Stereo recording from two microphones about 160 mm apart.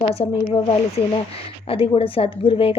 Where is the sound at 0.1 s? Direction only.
35° left (ahead or behind).